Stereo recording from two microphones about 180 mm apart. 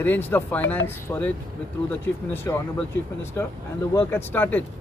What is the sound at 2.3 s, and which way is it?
Speech, 10° left (ahead or behind).